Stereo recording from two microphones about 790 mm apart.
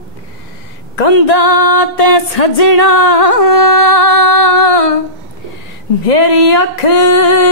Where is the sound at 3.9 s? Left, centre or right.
Left.